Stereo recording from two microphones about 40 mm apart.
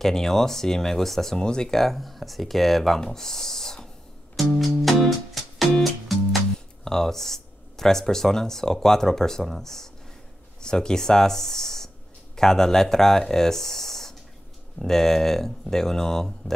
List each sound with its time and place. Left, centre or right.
0.0 s speech: centre
1.4 s speech: centre
4.6 s music: centre
6.8 s speech: centre